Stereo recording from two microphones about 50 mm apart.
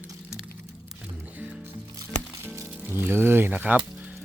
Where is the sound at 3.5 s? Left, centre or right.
Right.